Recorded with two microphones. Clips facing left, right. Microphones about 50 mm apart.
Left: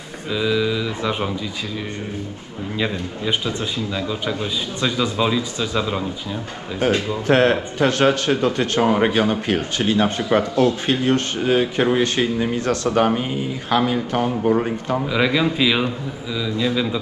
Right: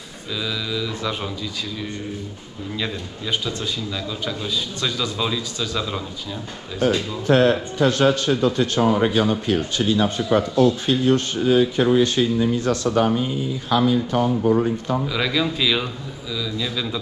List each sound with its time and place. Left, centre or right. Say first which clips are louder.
0.3 s a man's voice: left 7 dB; left
6.8 s speech: left 1 dB; left
7.2 s speech: even; left
15.0 s a man's voice: left 7 dB; centre